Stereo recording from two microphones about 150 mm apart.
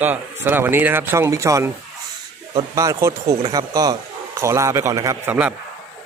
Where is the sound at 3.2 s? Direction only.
45° right (ahead or behind).